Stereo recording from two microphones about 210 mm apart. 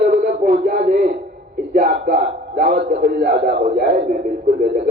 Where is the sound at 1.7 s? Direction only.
40° right (ahead or behind).